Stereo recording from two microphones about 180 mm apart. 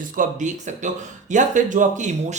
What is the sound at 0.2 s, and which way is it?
Speech, 45° right (ahead or behind).